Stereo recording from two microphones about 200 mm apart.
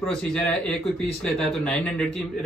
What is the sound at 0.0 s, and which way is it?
A man's voice, 5° left (ahead or behind).